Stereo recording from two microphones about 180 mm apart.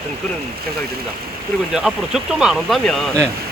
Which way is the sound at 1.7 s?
5° right (ahead or behind).